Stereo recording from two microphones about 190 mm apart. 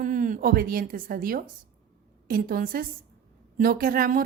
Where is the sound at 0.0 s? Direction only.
45° right (ahead or behind).